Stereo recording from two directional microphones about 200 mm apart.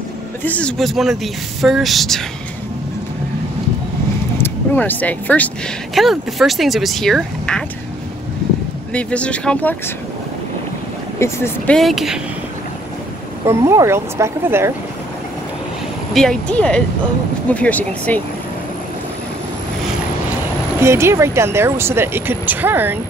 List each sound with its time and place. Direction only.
0.4 s speech: 5° left (ahead or behind)
4.4 s speech: 10° left (ahead or behind)
8.9 s speech: 5° left (ahead or behind)
11.1 s speech: 15° left (ahead or behind)
13.5 s speech: 15° right (ahead or behind)
16.1 s speech: centre (ahead or behind)
20.8 s speech: 15° right (ahead or behind)